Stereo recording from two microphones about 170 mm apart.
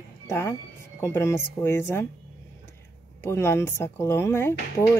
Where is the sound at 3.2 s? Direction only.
15° left (ahead or behind).